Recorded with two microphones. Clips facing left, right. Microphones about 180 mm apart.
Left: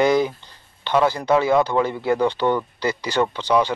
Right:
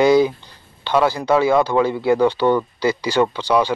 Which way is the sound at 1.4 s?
10° right (ahead or behind).